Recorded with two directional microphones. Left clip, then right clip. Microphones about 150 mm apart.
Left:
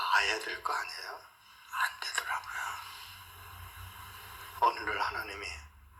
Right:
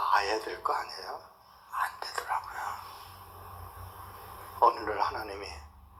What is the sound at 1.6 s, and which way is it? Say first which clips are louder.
Whispering: even; 45° left (ahead or behind).